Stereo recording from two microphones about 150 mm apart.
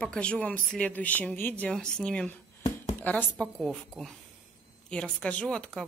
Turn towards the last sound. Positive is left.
turn(degrees=5)  # may be behind; listen again after turning